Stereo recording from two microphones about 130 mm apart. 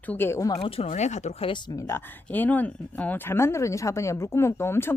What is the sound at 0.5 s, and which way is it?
Speech, 45° left (ahead or behind).